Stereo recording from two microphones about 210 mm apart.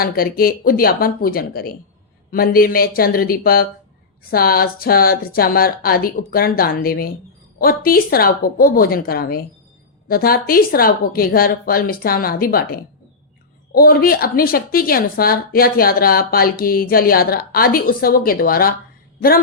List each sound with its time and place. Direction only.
0.0 s a woman's voice: 45° left (ahead or behind)